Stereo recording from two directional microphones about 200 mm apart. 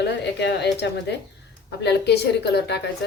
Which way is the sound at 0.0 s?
60° left (ahead or behind).